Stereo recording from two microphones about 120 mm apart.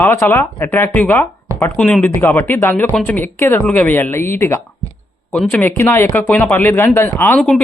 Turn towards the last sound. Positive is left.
turn(degrees=10)  # may be behind; listen again after turning